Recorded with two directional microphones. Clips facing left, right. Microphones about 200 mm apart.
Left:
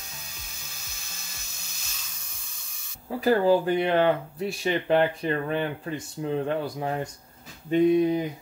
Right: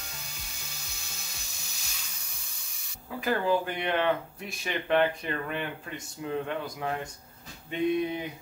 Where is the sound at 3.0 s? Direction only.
35° left (ahead or behind).